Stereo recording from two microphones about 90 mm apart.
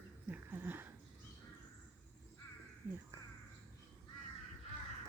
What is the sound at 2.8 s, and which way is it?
Speech, 30° right (ahead or behind).